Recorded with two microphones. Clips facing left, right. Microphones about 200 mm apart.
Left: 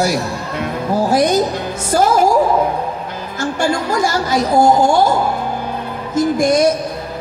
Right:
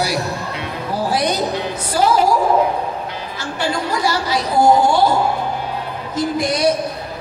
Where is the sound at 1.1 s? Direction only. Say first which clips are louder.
Left 4 dB; 45° left (ahead or behind).